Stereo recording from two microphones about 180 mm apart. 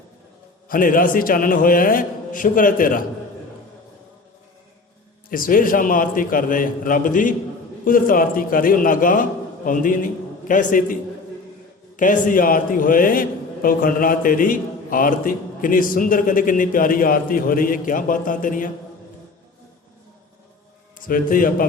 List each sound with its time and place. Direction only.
0.7 s a man's voice: 50° left (ahead or behind)
5.3 s a man's voice: 50° left (ahead or behind)
11.9 s a man's voice: 45° left (ahead or behind)
21.1 s a man's voice: 50° left (ahead or behind)